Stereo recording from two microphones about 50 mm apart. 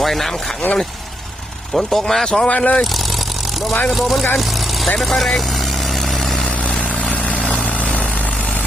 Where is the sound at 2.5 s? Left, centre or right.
Left.